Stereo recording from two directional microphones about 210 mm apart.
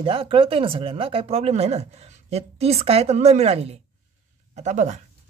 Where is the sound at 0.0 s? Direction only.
25° right (ahead or behind).